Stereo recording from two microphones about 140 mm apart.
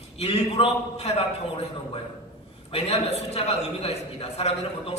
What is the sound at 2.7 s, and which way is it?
A man's voice, 50° left (ahead or behind).